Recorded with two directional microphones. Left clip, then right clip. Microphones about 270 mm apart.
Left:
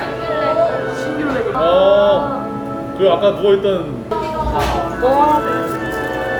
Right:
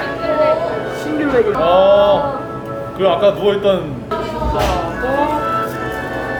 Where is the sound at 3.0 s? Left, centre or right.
Centre.